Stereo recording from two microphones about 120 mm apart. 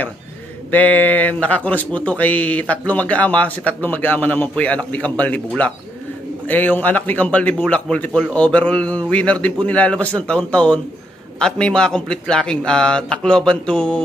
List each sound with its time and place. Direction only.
0.7 s speech: 15° left (ahead or behind)